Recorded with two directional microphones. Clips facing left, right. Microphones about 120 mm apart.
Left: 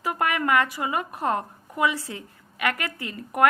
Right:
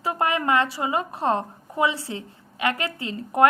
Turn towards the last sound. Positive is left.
turn(degrees=-25)  # may be behind; listen again after turning